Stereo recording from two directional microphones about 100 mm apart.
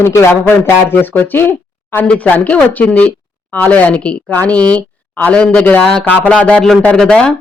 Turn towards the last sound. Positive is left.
turn(degrees=5)  # may be behind; listen again after turning